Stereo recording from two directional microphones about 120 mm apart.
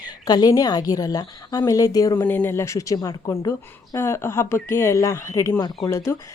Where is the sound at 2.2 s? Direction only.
15° left (ahead or behind).